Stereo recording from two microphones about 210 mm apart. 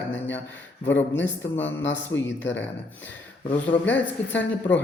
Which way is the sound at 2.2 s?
60° left (ahead or behind).